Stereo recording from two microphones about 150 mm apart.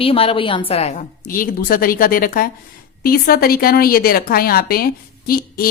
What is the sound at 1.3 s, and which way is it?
Speech, 70° left (ahead or behind).